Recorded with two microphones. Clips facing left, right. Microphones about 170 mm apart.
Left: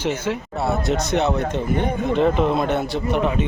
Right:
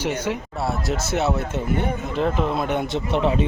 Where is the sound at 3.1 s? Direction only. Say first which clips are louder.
Right 1 dB; 25° right (ahead or behind).